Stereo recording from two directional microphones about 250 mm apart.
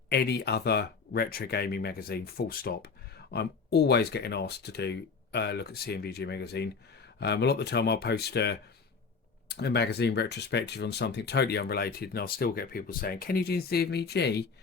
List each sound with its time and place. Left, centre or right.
0.1 s speech: left